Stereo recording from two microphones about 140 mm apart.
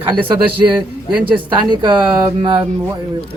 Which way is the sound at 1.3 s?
35° right (ahead or behind).